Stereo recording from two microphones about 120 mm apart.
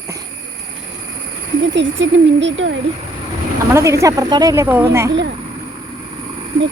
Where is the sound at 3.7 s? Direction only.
25° right (ahead or behind).